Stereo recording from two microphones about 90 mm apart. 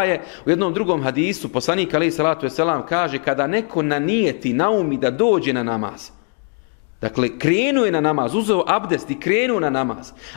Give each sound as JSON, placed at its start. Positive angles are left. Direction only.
{"t": 0.0, "sound": "a man's voice", "side_deg": 15}
{"t": 7.0, "sound": "a man's voice", "side_deg": 20}